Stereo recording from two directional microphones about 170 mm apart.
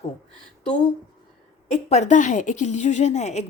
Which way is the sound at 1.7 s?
40° left (ahead or behind).